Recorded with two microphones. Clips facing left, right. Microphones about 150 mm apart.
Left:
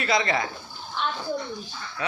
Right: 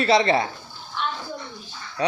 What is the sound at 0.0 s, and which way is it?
Speech, 35° right (ahead or behind).